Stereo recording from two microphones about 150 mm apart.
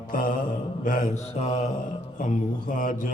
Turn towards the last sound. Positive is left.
turn(degrees=60)  # may be behind; listen again after turning